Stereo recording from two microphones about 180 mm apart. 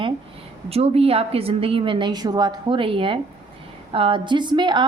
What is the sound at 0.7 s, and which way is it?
Speech, 35° right (ahead or behind).